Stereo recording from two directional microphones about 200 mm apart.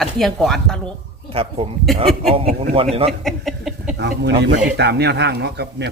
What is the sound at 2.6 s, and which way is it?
Speech, 30° right (ahead or behind).